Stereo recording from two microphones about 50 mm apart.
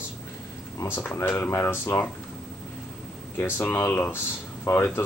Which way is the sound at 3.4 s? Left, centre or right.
Left.